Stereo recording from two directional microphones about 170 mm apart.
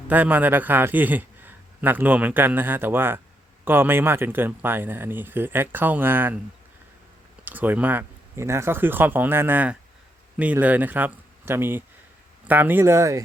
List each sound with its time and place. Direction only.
0.1 s a man's voice: 10° right (ahead or behind)
7.4 s a man's voice: 10° right (ahead or behind)